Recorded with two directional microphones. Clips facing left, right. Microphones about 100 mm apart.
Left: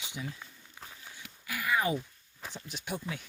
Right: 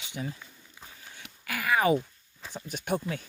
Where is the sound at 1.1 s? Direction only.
65° right (ahead or behind).